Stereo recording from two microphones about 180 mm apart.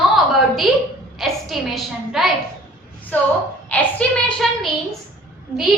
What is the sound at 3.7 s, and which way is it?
Speech, 5° left (ahead or behind).